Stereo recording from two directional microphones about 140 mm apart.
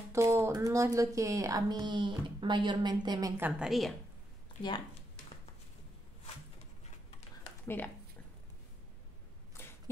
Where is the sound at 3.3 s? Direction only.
10° right (ahead or behind).